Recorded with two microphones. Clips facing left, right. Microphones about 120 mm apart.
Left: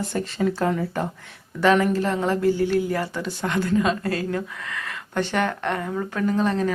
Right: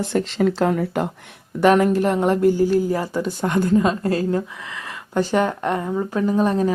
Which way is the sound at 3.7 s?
25° right (ahead or behind).